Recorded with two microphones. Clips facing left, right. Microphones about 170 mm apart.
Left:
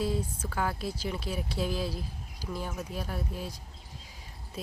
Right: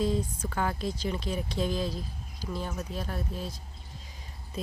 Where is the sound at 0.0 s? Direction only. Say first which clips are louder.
Right 3 dB; 10° left (ahead or behind).